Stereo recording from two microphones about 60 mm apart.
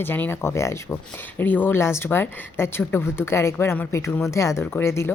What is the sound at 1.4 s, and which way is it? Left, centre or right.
A woman's voice, left.